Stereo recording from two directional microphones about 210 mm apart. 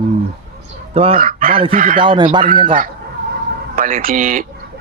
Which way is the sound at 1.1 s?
40° right (ahead or behind).